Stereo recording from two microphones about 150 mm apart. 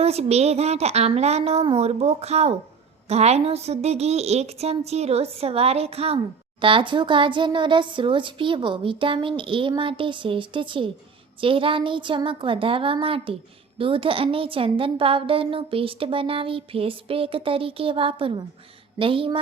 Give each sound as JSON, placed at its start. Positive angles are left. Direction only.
{"t": 0.0, "sound": "a woman's voice", "side_deg": -45}